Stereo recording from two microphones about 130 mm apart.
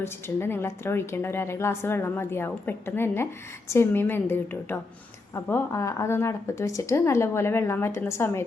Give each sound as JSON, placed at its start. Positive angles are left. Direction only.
{"t": 0.0, "sound": "a woman's voice", "side_deg": 20}